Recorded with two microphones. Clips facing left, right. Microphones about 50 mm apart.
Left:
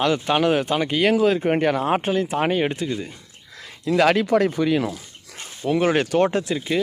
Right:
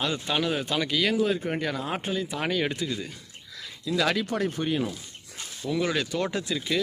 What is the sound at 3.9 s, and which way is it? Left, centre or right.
Speech, left.